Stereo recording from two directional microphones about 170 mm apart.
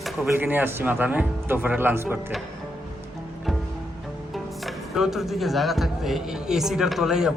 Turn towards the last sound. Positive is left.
turn(degrees=-5)  # may be behind; listen again after turning